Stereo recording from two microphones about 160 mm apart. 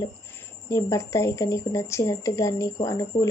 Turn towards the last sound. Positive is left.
turn(degrees=20)  # may be behind; listen again after turning